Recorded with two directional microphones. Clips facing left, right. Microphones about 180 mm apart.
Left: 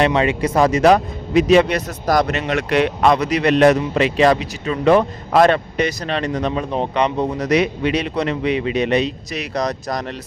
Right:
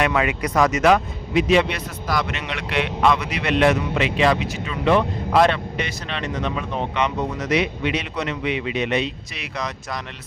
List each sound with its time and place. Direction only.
0.0 s speech: 30° left (ahead or behind)